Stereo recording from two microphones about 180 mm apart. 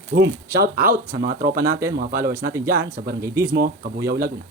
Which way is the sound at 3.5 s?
60° right (ahead or behind).